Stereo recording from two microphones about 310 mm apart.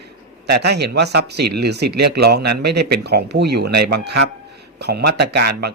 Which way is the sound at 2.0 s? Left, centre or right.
Right.